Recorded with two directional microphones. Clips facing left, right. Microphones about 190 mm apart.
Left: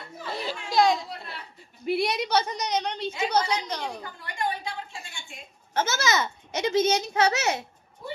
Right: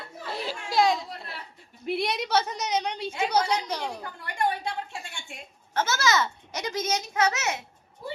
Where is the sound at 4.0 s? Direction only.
65° right (ahead or behind).